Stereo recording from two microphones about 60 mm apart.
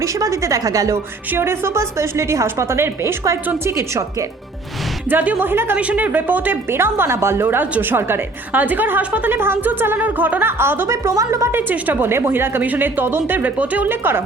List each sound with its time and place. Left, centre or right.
0.0 s a woman's voice: right
1.3 s a woman's voice: right
5.0 s speech: right
5.7 s speech: right
8.6 s speech: right
10.8 s a woman's voice: right
11.5 s speech: right